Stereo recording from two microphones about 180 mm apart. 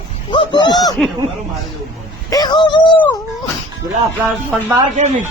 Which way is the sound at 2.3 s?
25° left (ahead or behind).